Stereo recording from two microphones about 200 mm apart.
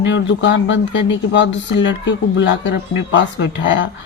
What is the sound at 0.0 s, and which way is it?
Speech, 65° left (ahead or behind).